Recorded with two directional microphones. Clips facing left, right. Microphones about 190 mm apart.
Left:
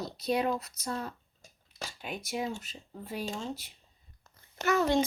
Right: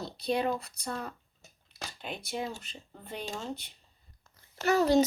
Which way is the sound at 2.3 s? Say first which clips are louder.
Left 2 dB; 5° left (ahead or behind).